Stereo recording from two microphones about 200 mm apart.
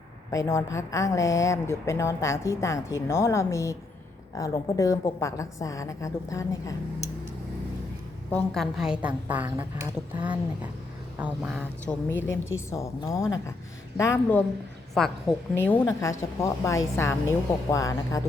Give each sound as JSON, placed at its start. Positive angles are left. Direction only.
{"t": 0.3, "sound": "a woman's voice", "side_deg": 15}
{"t": 8.3, "sound": "a woman's voice", "side_deg": 5}
{"t": 11.2, "sound": "speech", "side_deg": -5}
{"t": 11.9, "sound": "a woman's voice", "side_deg": 10}